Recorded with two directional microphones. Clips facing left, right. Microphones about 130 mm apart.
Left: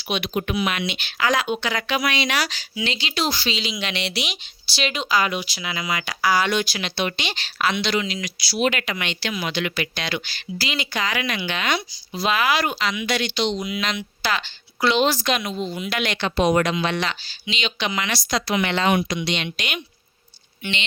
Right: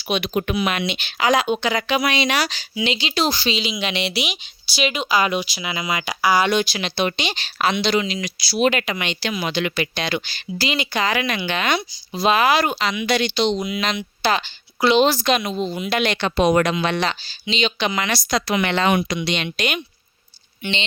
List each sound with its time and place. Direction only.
0.1 s speech: 40° right (ahead or behind); by 5.2 s 10° right (ahead or behind)
5.2 s speech: 20° right (ahead or behind)
8.5 s speech: 35° right (ahead or behind)
8.9 s speech: 20° right (ahead or behind); by 11.8 s 40° right (ahead or behind)
12.1 s speech: 25° right (ahead or behind)
15.0 s speech: 30° right (ahead or behind)
16.2 s speech: 65° right (ahead or behind)
17.0 s speech: 35° right (ahead or behind)
20.6 s speech: 25° right (ahead or behind)